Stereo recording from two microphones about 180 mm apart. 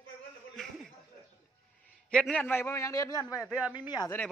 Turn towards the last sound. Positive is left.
turn(degrees=20)  # may be behind; listen again after turning